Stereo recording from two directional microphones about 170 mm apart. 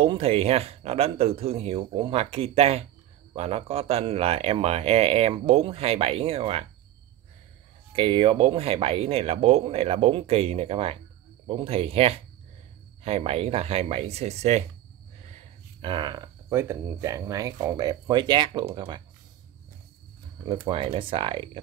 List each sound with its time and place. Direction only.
0.0 s speech: 35° right (ahead or behind)
7.9 s speech: 30° right (ahead or behind)
15.8 s speech: 25° right (ahead or behind)
20.7 s speech: 30° right (ahead or behind)